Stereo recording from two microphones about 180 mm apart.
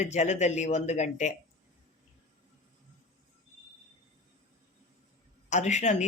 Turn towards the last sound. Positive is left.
turn(degrees=40)  # may be behind; listen again after turning